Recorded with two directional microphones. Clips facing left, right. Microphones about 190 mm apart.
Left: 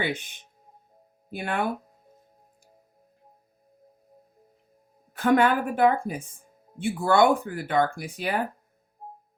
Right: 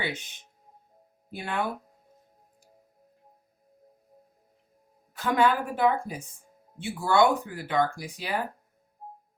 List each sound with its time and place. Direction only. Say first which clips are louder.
1.3 s a woman's voice: left 2 dB; 55° left (ahead or behind)
5.1 s a woman's voice: left 3 dB; 55° left (ahead or behind)